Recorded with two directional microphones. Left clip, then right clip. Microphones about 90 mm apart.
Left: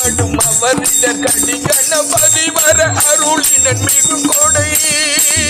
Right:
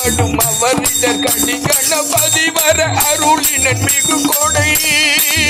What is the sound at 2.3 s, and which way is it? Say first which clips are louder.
Music: right 2 dB; 20° right (ahead or behind).